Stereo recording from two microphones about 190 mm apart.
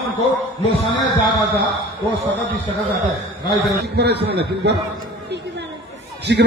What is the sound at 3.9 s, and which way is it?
Speech, 60° right (ahead or behind).